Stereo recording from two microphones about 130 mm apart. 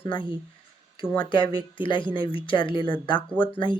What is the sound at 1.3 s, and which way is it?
Speech, 40° left (ahead or behind).